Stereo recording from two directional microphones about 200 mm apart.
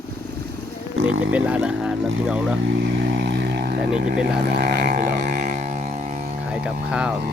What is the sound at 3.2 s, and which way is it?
Vehicle, 60° right (ahead or behind).